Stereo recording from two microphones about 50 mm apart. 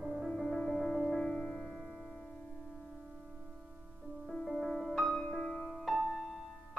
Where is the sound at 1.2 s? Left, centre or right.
Centre.